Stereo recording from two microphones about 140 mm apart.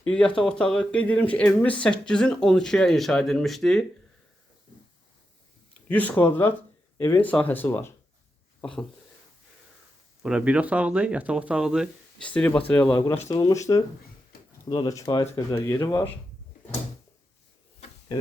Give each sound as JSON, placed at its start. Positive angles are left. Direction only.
{"t": 0.0, "sound": "speech", "side_deg": 10}
{"t": 5.9, "sound": "speech", "side_deg": 10}
{"t": 8.6, "sound": "speech", "side_deg": 5}
{"t": 10.2, "sound": "speech", "side_deg": -5}
{"t": 12.2, "sound": "speech", "side_deg": 10}
{"t": 13.3, "sound": "speech", "side_deg": 25}
{"t": 18.1, "sound": "speech", "side_deg": 30}